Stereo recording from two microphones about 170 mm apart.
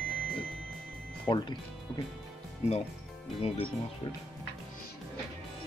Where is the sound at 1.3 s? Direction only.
25° left (ahead or behind).